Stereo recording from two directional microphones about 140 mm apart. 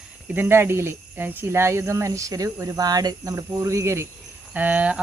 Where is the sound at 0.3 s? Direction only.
15° right (ahead or behind).